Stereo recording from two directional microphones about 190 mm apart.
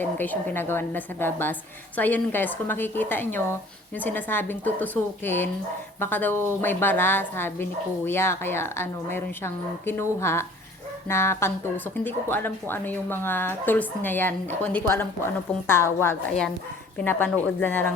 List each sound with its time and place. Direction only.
0.0 s a woman's voice: 10° left (ahead or behind)